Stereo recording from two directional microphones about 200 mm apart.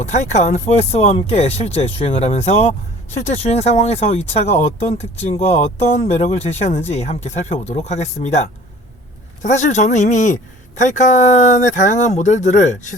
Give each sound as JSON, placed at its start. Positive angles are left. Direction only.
{"t": 0.0, "sound": "speech", "side_deg": 35}